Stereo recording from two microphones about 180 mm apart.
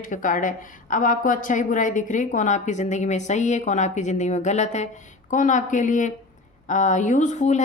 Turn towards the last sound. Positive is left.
turn(degrees=40)  # may be behind; listen again after turning